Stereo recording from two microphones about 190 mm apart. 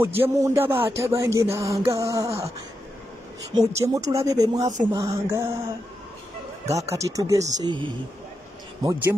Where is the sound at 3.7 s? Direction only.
15° right (ahead or behind).